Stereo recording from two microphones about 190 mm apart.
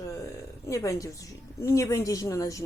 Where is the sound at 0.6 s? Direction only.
15° left (ahead or behind).